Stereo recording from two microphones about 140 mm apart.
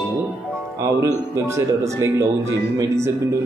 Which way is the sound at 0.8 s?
20° right (ahead or behind).